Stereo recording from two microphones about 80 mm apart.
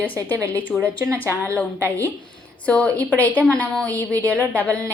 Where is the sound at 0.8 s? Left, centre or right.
Right.